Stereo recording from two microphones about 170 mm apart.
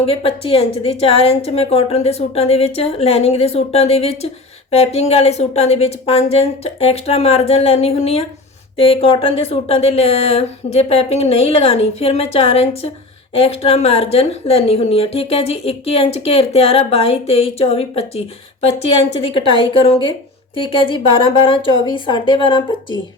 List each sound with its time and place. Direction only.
0.0 s a woman's voice: 35° left (ahead or behind)
19.3 s a woman's voice: 30° left (ahead or behind)